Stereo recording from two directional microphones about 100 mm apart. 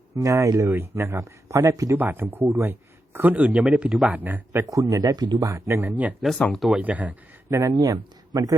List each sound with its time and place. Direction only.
0.2 s speech: 30° right (ahead or behind)
2.0 s speech: 20° right (ahead or behind)
4.6 s speech: 35° right (ahead or behind); by 6.1 s 15° right (ahead or behind)
6.5 s speech: centre (ahead or behind)
6.7 s speech: 15° right (ahead or behind)
7.5 s speech: 35° right (ahead or behind)